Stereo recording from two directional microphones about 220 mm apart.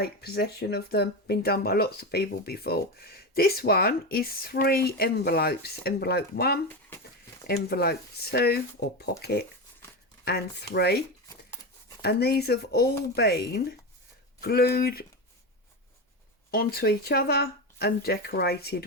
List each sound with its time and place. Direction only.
0.0 s speech: 45° left (ahead or behind)
12.0 s speech: 45° left (ahead or behind)
16.5 s speech: 45° left (ahead or behind)